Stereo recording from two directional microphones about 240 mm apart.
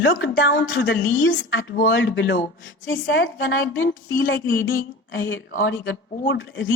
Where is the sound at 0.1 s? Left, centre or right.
Left.